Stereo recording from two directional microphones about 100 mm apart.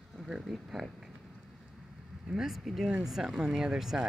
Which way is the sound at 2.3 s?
5° right (ahead or behind).